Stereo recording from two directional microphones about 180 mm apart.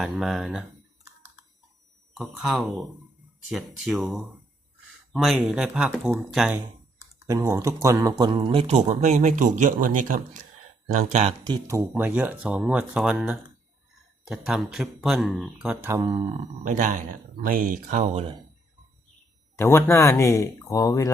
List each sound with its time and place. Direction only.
0.0 s speech: centre (ahead or behind)
2.1 s speech: centre (ahead or behind)
5.1 s speech: centre (ahead or behind)
7.3 s speech: 15° right (ahead or behind); by 11.3 s 40° right (ahead or behind)
11.4 s speech: 20° right (ahead or behind)
11.9 s speech: 10° right (ahead or behind); by 16.3 s 25° right (ahead or behind)
16.6 s speech: 45° right (ahead or behind)
19.5 s speech: 15° left (ahead or behind)